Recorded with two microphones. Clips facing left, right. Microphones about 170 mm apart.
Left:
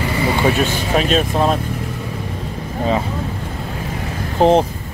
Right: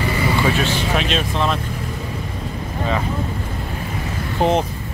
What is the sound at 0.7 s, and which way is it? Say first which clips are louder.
Speech: left 3 dB; 45° left (ahead or behind).